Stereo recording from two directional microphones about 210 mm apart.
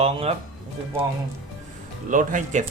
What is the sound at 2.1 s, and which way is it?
Speech, 40° right (ahead or behind).